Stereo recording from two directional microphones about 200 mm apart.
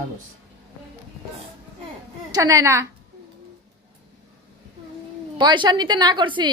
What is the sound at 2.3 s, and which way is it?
Speech, 15° right (ahead or behind).